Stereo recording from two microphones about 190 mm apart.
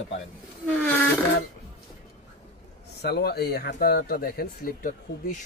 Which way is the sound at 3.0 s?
55° left (ahead or behind).